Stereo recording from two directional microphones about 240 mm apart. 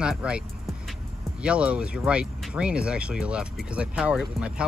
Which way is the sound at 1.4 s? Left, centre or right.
Centre.